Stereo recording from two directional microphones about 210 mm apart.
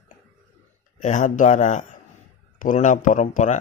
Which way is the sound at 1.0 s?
35° left (ahead or behind).